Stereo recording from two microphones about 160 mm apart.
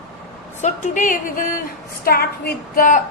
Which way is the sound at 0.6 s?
50° left (ahead or behind).